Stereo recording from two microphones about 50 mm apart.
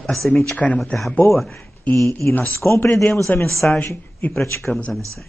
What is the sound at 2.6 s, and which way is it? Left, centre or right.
Speech, left.